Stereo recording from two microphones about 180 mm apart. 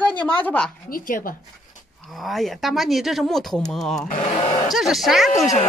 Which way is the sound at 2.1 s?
Centre (ahead or behind).